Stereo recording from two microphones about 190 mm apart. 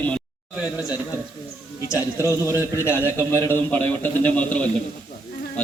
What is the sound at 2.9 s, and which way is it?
A man's voice, 15° left (ahead or behind).